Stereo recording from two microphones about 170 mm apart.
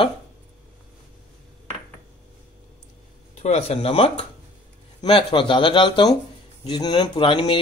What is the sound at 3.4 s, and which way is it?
Speech, 40° left (ahead or behind).